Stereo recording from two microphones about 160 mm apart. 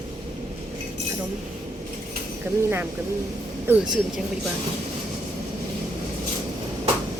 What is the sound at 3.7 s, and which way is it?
Speech, 15° right (ahead or behind).